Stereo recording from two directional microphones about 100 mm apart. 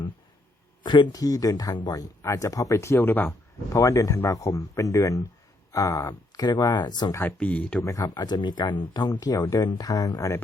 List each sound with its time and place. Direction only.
0.9 s speech: 50° left (ahead or behind); by 3.3 s 20° left (ahead or behind)
3.7 s speech: 30° left (ahead or behind)
7.3 s speech: 15° left (ahead or behind)
7.9 s speech: 35° left (ahead or behind)